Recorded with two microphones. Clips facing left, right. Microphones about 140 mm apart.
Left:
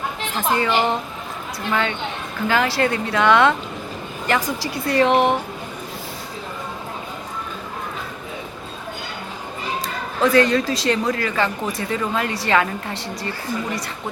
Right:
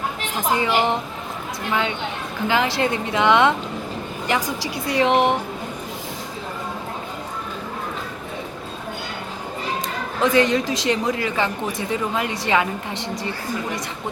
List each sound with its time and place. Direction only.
0.3 s speech: 15° right (ahead or behind)
10.2 s speech: 20° right (ahead or behind)